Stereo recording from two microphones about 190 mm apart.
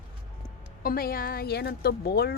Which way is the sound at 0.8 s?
50° left (ahead or behind).